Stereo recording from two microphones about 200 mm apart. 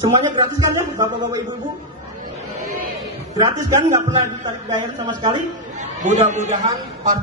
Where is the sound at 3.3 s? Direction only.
15° right (ahead or behind).